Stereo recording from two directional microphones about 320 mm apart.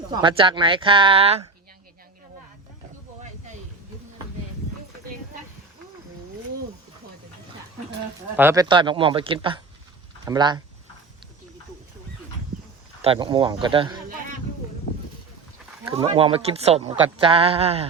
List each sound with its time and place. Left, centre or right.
0.1 s speech: centre
8.4 s speech: centre
13.0 s speech: centre
15.8 s speech: centre